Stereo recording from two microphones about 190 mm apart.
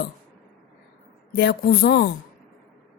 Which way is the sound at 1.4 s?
50° left (ahead or behind).